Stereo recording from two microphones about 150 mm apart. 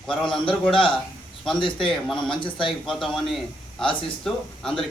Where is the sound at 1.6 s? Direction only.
35° left (ahead or behind).